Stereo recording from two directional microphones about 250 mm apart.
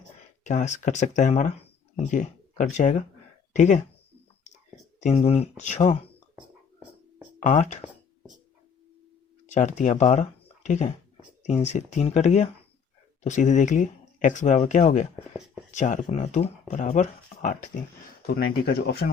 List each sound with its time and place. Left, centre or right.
0.4 s speech: left
4.9 s speech: left
7.4 s speech: left
9.5 s speech: left